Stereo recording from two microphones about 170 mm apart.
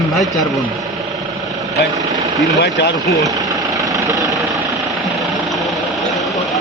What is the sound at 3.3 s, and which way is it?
Vehicle, 20° right (ahead or behind).